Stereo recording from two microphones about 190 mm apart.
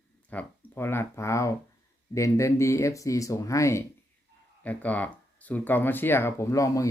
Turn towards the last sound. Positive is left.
turn(degrees=15)  # may be behind; listen again after turning